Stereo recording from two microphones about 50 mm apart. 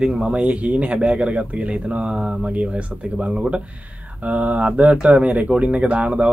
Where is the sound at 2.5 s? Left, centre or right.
Right.